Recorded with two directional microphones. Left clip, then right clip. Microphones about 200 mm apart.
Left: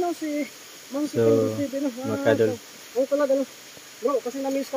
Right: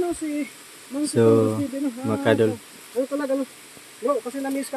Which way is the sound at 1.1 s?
25° right (ahead or behind).